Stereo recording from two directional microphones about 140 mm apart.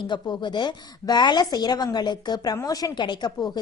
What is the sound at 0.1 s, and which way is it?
A woman's voice, 35° left (ahead or behind).